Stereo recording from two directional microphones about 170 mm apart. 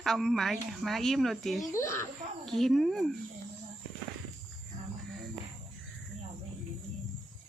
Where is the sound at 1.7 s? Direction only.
15° left (ahead or behind).